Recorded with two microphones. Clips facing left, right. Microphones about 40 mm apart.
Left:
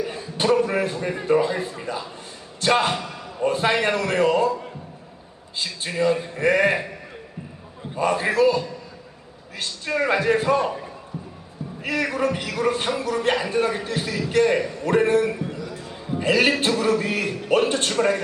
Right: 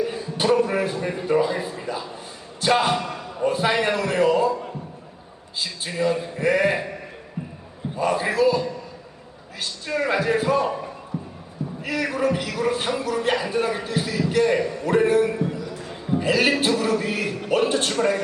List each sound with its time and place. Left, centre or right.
0.0 s a sound: centre
1.3 s a man's voice: centre
3.0 s a sound: right
3.4 s a man's voice: centre
5.5 s a man's voice: centre
7.9 s a man's voice: centre
9.9 s a man's voice: centre
11.8 s a man's voice: centre
15.4 s a sound: centre
16.0 s a man's voice: centre